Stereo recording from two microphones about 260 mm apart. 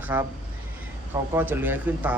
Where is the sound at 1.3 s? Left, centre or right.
Centre.